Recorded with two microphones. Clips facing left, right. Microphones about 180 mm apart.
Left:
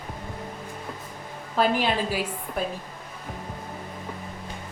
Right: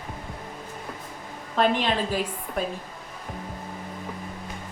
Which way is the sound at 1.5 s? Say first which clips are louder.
Even; 5° left (ahead or behind).